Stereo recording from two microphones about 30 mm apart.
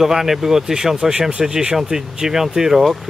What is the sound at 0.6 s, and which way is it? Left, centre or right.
Speech, right.